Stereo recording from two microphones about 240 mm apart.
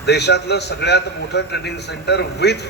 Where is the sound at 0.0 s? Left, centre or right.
Left.